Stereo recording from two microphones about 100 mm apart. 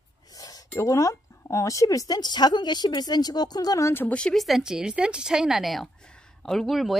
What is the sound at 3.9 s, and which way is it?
Speech, 15° left (ahead or behind).